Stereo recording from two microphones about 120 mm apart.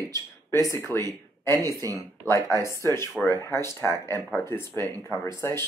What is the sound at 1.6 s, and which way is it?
Speech, 30° right (ahead or behind).